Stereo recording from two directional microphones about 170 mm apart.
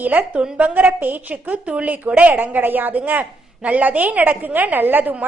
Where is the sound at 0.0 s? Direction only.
10° right (ahead or behind).